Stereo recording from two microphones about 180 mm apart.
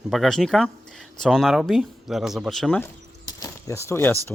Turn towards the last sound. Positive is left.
turn(degrees=15)  # may be behind; listen again after turning